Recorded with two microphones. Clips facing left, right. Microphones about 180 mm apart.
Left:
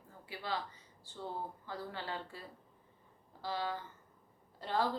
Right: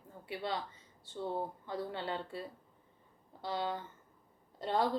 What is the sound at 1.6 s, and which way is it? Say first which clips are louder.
Speech: right 4 dB; 25° right (ahead or behind).